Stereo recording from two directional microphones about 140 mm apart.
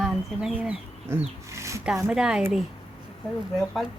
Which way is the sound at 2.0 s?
5° right (ahead or behind).